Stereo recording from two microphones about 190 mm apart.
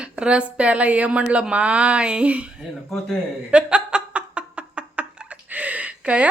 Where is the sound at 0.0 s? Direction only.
5° right (ahead or behind).